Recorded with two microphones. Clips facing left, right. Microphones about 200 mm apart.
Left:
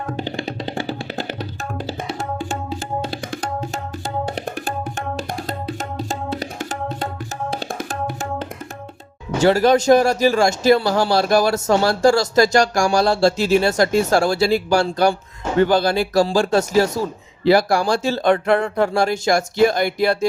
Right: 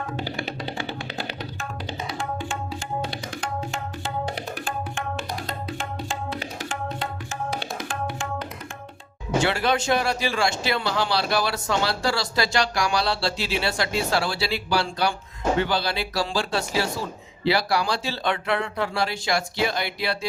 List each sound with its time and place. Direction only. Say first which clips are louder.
2.1 s tabla: left 4 dB; 40° left (ahead or behind)
7.7 s music: left 4 dB; 45° left (ahead or behind)
9.4 s speech: left 10 dB; 40° left (ahead or behind)